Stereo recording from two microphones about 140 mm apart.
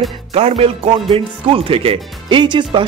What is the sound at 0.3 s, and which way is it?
A man's voice, 50° right (ahead or behind).